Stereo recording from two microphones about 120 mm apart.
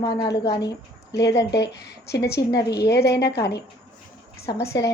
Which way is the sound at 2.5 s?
30° left (ahead or behind).